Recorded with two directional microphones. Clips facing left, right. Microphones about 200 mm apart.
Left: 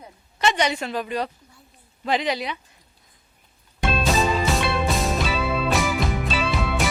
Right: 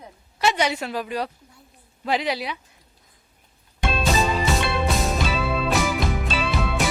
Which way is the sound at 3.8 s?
Centre (ahead or behind).